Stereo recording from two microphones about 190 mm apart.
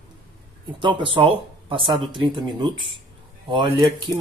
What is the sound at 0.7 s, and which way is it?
Speech, 25° right (ahead or behind).